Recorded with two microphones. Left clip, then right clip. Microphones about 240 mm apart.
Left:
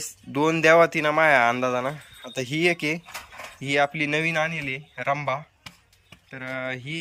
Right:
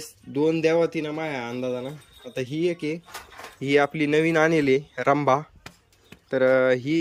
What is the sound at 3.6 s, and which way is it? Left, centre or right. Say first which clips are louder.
Speech: right 2 dB; centre.